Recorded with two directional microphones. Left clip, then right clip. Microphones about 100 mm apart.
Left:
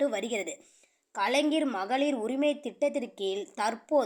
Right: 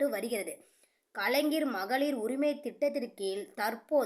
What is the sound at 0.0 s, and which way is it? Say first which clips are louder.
A woman's voice: left 2 dB; 20° left (ahead or behind).